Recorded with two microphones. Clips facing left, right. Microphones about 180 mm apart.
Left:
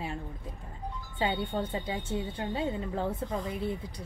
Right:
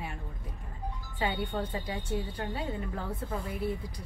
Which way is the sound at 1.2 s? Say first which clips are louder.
Left 2 dB; 25° left (ahead or behind).